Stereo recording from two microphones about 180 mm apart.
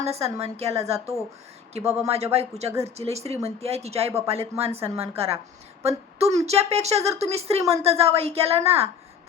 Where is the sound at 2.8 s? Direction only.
35° right (ahead or behind).